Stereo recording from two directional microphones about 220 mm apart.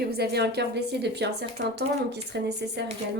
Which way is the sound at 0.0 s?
45° right (ahead or behind).